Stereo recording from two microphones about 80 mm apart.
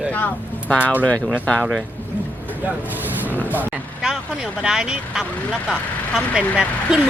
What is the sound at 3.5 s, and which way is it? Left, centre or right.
Speech, right.